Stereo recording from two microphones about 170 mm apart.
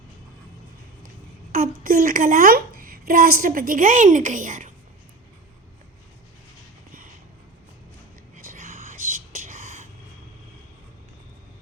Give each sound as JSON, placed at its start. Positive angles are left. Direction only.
{"t": 1.5, "sound": "a child's voice", "side_deg": -55}
{"t": 8.4, "sound": "whispering", "side_deg": -50}